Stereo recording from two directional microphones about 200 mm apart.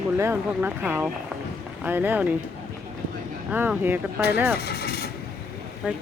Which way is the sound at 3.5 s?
10° right (ahead or behind).